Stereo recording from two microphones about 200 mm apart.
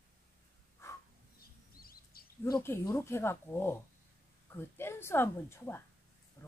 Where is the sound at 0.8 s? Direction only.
15° left (ahead or behind).